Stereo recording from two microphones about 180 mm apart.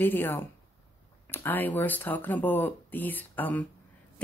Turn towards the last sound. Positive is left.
turn(degrees=10)  # may be behind; listen again after turning